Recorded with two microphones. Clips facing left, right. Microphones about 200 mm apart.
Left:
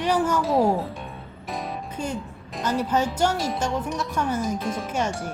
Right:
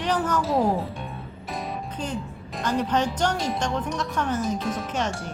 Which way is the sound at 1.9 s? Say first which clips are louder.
Left 1 dB; 10° left (ahead or behind).